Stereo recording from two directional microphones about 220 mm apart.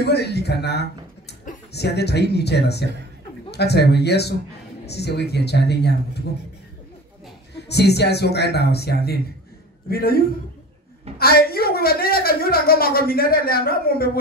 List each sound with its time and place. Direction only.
0.0 s a woman's voice: 50° left (ahead or behind)
7.5 s a woman's voice: 50° left (ahead or behind)